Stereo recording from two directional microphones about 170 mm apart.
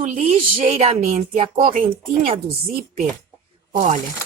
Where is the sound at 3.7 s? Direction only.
40° right (ahead or behind).